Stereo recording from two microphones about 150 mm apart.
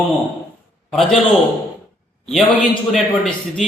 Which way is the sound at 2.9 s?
Centre (ahead or behind).